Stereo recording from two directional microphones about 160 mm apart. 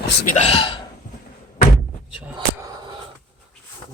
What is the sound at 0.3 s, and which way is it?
Speech, 40° left (ahead or behind).